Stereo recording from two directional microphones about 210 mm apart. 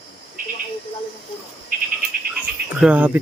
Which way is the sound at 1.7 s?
40° right (ahead or behind).